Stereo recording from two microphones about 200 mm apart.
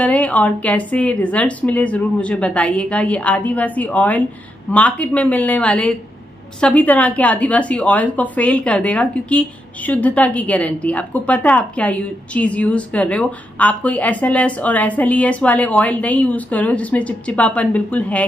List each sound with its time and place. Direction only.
0.0 s a woman's voice: 5° left (ahead or behind)